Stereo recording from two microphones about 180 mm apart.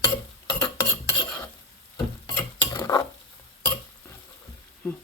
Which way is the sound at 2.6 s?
20° left (ahead or behind).